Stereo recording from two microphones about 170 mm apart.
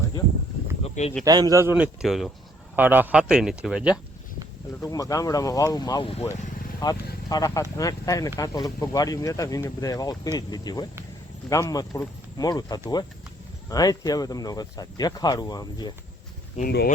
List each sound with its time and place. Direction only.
1.2 s a man's voice: 20° right (ahead or behind); by 3.9 s 5° right (ahead or behind)
4.8 s speech: 20° left (ahead or behind)
16.6 s speech: 60° left (ahead or behind)